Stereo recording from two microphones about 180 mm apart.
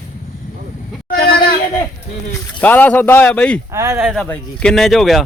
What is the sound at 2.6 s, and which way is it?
A man's voice, 10° left (ahead or behind).